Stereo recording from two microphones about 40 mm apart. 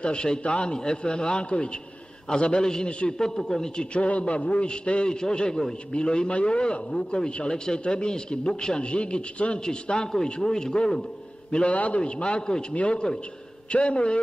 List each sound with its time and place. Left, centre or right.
0.0 s a man's voice: left
3.9 s a man's voice: left
6.9 s a man's voice: centre
11.7 s a man's voice: left
12.0 s a man's voice: left